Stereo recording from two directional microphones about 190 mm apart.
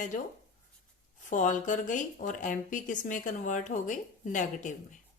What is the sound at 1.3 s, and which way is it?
Speech, 40° left (ahead or behind).